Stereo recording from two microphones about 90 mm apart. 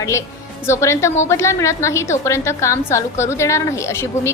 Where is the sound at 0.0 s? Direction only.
35° left (ahead or behind).